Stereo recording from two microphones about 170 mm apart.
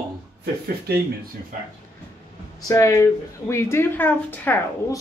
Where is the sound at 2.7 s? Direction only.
20° left (ahead or behind).